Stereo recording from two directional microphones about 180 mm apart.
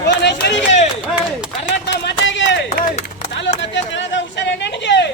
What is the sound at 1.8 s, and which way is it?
Speech, 80° left.